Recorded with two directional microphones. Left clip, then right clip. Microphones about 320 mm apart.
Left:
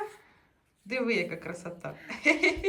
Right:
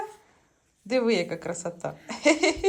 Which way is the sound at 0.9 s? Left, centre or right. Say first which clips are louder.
Right 5 dB; centre.